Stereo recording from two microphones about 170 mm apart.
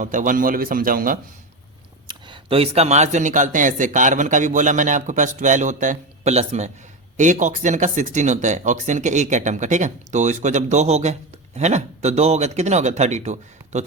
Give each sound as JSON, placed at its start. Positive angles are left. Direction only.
{"t": 0.0, "sound": "a man's voice", "side_deg": -50}
{"t": 2.0, "sound": "speech", "side_deg": -30}